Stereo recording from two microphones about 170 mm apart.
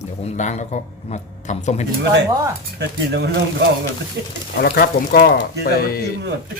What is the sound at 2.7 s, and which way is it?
Speech, 75° right (ahead or behind).